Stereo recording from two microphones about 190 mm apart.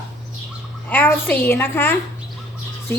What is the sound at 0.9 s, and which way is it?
A woman's voice, 10° left (ahead or behind).